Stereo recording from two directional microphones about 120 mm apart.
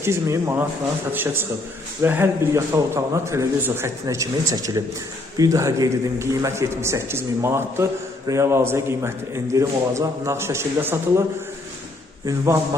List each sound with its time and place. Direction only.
0.0 s a man's voice: 20° right (ahead or behind)